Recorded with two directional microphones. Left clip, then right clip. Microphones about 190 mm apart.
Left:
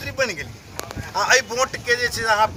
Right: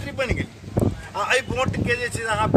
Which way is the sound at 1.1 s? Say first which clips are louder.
Left 5 dB; 15° right (ahead or behind).